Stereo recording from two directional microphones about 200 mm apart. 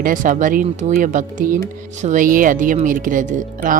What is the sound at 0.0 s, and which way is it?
Speech, 40° right (ahead or behind).